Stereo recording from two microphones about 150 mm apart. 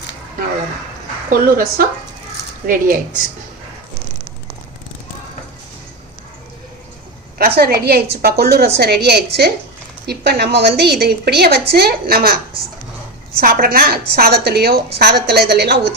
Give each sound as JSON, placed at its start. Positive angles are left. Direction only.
{"t": 1.3, "sound": "speech", "side_deg": -70}
{"t": 7.3, "sound": "a woman's voice", "side_deg": -85}
{"t": 13.4, "sound": "a woman's voice", "side_deg": -75}